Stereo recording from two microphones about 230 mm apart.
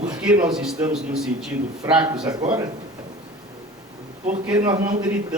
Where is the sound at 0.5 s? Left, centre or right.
Centre.